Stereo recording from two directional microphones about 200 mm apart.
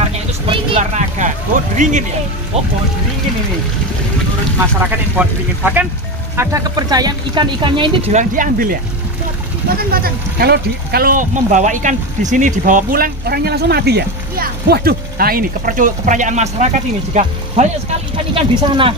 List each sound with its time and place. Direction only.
0.5 s a sound: 30° right (ahead or behind)
1.8 s speech: 40° right (ahead or behind)
5.1 s speech: 10° right (ahead or behind); by 7.9 s 25° right (ahead or behind)
8.1 s speech: 40° right (ahead or behind)
9.8 s speech: 50° right (ahead or behind); by 18.9 s 25° right (ahead or behind)